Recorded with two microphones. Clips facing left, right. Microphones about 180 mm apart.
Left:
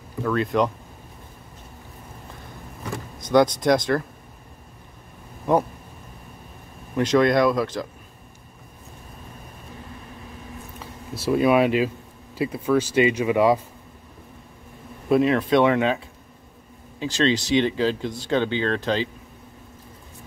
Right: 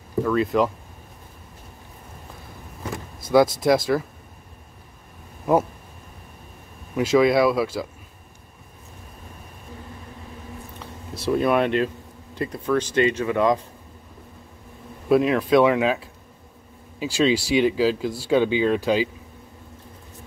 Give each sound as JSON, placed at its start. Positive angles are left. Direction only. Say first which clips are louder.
{"t": 0.2, "sound": "speech", "louder": "right 1 dB", "side_deg": 0}
{"t": 3.2, "sound": "speech", "louder": "right 1 dB", "side_deg": -5}
{"t": 7.0, "sound": "speech", "louder": "right 1 dB", "side_deg": -5}
{"t": 10.8, "sound": "speech", "louder": "left 1 dB", "side_deg": 0}
{"t": 15.0, "sound": "speech", "louder": "even", "side_deg": 0}